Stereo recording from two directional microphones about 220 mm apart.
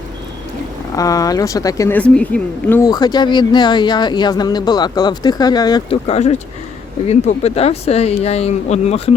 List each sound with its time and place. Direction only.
0.9 s a woman's voice: 15° left (ahead or behind)